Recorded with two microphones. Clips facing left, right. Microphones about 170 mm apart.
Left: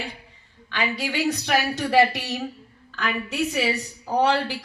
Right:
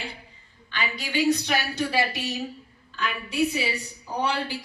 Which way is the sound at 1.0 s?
75° left (ahead or behind).